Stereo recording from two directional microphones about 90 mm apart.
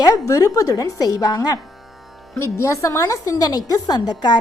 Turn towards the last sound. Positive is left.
turn(degrees=50)  # may be behind; listen again after turning